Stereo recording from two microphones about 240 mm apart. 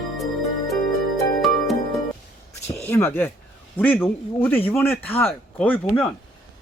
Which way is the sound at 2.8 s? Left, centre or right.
Centre.